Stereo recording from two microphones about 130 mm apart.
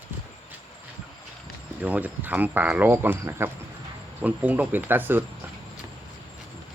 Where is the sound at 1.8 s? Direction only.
10° right (ahead or behind).